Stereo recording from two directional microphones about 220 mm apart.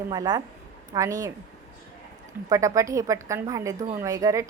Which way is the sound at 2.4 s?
15° right (ahead or behind).